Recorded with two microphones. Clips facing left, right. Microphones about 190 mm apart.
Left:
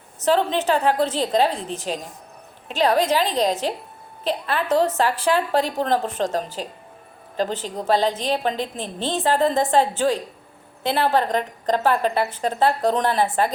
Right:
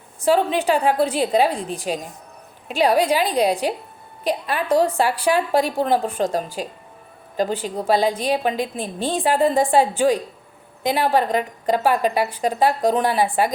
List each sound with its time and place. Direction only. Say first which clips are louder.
0.2 s a woman's voice: right 2 dB; 10° right (ahead or behind)